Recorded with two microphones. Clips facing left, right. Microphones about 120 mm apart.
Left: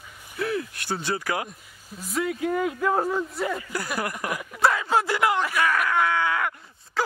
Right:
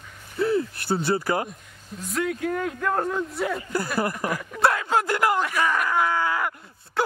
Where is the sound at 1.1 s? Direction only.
30° right (ahead or behind).